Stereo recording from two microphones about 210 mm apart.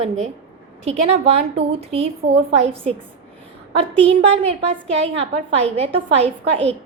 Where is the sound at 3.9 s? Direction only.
30° right (ahead or behind).